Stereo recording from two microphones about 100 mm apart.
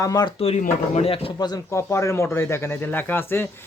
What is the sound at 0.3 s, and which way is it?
Speech, 90° left.